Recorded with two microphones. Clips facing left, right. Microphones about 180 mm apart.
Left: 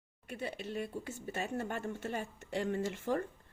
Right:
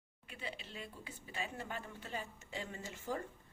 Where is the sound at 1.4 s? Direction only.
45° left (ahead or behind).